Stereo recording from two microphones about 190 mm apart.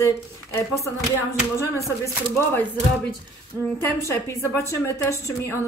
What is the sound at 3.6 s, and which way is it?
A woman's voice, 15° left (ahead or behind).